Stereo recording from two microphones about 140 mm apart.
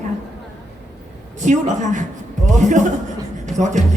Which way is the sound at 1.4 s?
60° right (ahead or behind).